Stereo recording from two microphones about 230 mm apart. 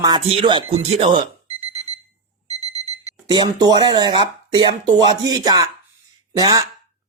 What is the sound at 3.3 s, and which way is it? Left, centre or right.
Speech, centre.